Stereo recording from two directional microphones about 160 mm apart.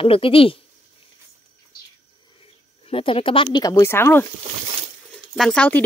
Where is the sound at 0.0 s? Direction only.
35° left (ahead or behind).